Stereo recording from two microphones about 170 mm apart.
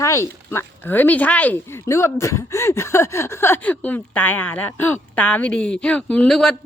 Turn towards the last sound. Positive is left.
turn(degrees=5)  # may be behind; listen again after turning